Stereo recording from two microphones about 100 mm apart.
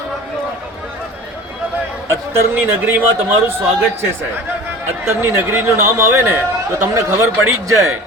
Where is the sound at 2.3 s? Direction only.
20° right (ahead or behind).